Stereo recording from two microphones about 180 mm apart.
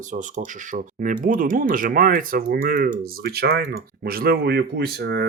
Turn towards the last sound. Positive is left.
turn(degrees=-65)  # may be behind; listen again after turning